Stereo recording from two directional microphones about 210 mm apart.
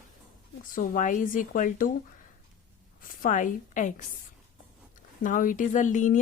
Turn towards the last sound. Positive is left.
turn(degrees=35)  # may be behind; listen again after turning